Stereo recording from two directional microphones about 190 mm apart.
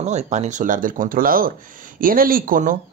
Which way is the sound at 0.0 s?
40° right (ahead or behind).